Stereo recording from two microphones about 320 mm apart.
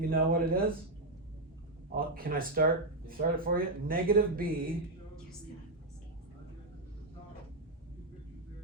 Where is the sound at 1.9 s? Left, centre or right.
Right.